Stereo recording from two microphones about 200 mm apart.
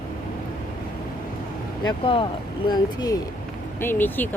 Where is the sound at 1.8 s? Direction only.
25° left (ahead or behind).